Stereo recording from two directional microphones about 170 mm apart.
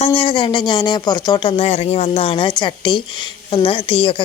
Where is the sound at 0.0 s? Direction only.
30° left (ahead or behind).